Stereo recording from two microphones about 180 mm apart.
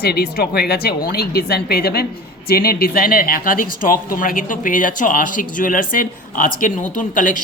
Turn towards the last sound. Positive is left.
turn(degrees=45)  # may be behind; listen again after turning